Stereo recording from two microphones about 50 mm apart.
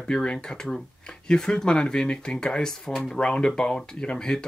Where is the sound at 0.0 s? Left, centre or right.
Centre.